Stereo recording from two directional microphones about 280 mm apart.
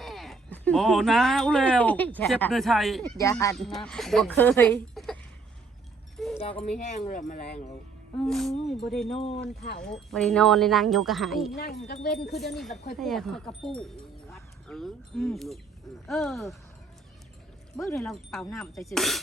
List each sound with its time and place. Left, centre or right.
0.0 s speech: centre
3.0 s speech: centre
6.1 s a sound: centre
6.4 s speech: left
8.3 s speech: centre
9.1 s speech: left
9.8 s speech: centre
11.5 s speech: left
12.5 s speech: centre
17.7 s speech: centre